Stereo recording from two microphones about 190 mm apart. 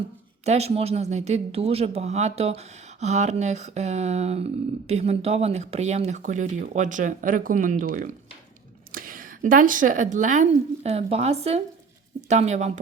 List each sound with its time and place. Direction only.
0.4 s speech: 35° right (ahead or behind)